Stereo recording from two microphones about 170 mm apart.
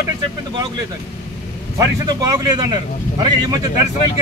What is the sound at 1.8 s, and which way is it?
Speech, 20° right (ahead or behind).